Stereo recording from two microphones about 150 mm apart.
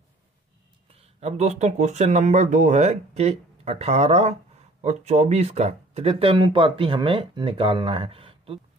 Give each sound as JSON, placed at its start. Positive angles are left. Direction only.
{"t": 0.8, "sound": "speech", "side_deg": -40}